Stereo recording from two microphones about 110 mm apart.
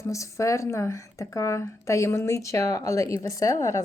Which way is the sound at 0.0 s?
30° left (ahead or behind).